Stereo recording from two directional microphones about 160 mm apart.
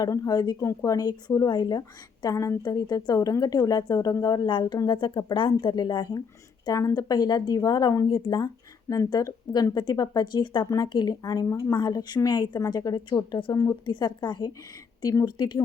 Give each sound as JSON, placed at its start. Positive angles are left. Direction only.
{"t": 0.0, "sound": "speech", "side_deg": 20}